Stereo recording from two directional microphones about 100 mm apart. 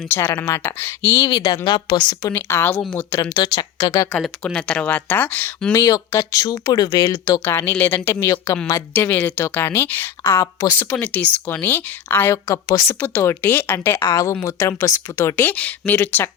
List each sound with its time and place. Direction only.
0.1 s speech: 25° left (ahead or behind)
1.3 s speech: 45° left (ahead or behind)
2.3 s speech: 20° left (ahead or behind)
3.3 s speech: 45° left (ahead or behind)
4.4 s speech: 10° left (ahead or behind)
5.7 s speech: 35° left (ahead or behind)
7.4 s speech: 20° left (ahead or behind)
8.9 s speech: 15° left (ahead or behind)
10.4 s speech: 35° left (ahead or behind)
11.0 s speech: 15° left (ahead or behind)
15.4 s speech: 15° left (ahead or behind)